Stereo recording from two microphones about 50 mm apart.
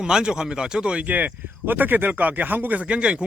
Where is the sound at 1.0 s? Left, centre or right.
Right.